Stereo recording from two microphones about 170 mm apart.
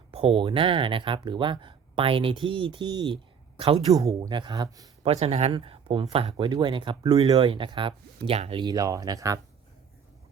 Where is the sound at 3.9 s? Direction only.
20° right (ahead or behind).